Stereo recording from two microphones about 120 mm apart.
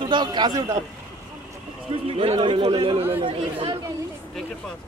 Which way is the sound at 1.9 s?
50° right (ahead or behind).